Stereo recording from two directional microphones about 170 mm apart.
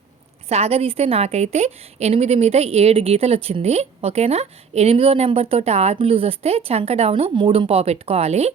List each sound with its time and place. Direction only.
0.4 s a woman's voice: 35° right (ahead or behind)